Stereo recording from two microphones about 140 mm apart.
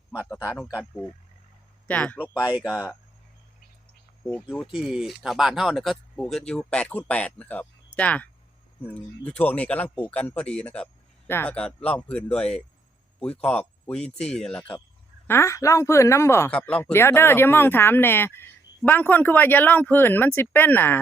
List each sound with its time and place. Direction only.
1.9 s speech: 10° left (ahead or behind)
2.4 s speech: 5° right (ahead or behind)
2.7 s speech: 20° left (ahead or behind)
4.8 s speech: centre (ahead or behind)
15.3 s speech: 20° left (ahead or behind)